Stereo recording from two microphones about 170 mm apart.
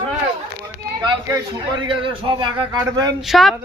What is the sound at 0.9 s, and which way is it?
A man's voice, 25° right (ahead or behind).